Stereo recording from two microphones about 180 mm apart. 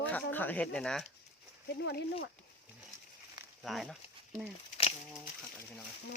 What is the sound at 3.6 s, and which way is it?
Speech, centre (ahead or behind).